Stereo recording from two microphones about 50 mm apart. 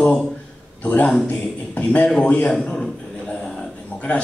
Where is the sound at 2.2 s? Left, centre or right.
Left.